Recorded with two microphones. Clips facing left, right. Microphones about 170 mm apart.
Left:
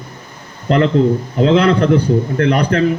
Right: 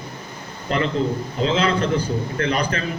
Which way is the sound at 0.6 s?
60° left (ahead or behind).